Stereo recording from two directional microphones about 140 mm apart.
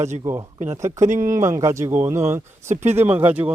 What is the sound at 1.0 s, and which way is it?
Speech, 60° right (ahead or behind).